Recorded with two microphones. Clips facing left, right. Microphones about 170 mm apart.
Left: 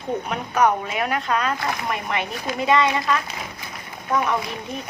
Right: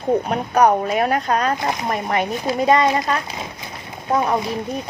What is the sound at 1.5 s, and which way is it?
Speech, 20° right (ahead or behind).